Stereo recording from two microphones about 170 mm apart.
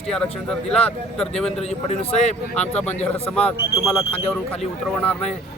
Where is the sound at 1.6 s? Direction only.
40° left (ahead or behind).